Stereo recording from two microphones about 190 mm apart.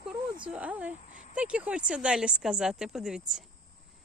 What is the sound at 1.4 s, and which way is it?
Speech, 5° right (ahead or behind).